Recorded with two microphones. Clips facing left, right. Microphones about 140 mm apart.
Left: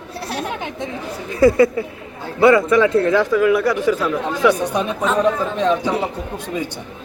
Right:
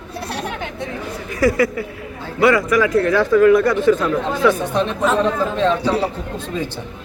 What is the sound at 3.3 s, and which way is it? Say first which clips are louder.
Speech: right 3 dB; 10° left (ahead or behind).